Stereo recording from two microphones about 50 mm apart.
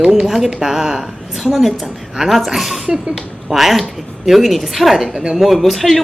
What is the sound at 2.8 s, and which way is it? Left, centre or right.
Speech, centre.